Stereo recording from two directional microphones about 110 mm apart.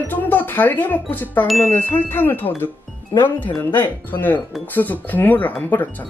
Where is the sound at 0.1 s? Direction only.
15° left (ahead or behind).